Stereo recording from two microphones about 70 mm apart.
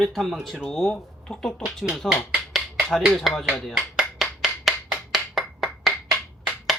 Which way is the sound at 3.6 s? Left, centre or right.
Centre.